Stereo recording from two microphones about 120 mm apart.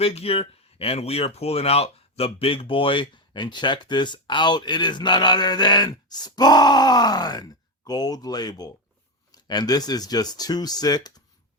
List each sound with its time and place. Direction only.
0.0 s speech: 55° left (ahead or behind); by 11.1 s 35° left (ahead or behind)